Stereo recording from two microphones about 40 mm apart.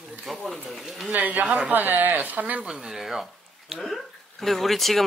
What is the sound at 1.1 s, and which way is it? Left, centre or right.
Speech, right.